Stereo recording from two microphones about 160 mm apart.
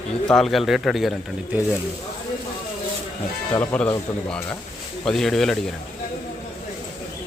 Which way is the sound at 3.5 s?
15° left (ahead or behind).